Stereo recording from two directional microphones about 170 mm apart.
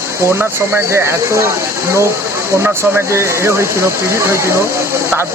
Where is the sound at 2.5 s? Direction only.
15° right (ahead or behind).